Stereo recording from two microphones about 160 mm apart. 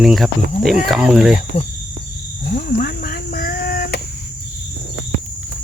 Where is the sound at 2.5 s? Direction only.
65° left (ahead or behind); by 4.0 s 80° left.